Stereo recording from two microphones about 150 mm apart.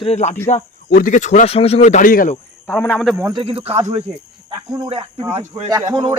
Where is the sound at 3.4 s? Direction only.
35° right (ahead or behind).